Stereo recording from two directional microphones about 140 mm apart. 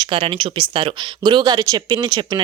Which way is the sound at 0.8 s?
35° right (ahead or behind).